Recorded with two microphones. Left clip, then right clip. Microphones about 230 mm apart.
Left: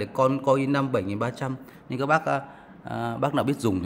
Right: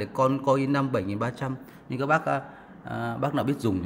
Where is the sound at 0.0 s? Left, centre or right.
Centre.